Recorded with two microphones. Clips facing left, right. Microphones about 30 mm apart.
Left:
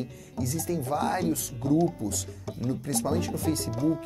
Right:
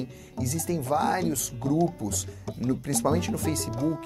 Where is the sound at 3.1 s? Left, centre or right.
Right.